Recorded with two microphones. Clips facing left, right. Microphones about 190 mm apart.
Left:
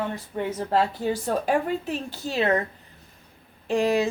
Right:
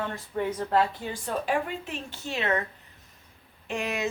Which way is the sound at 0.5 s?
30° left (ahead or behind).